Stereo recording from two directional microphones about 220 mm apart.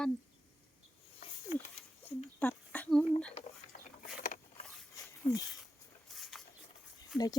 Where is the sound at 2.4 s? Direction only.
5° left (ahead or behind).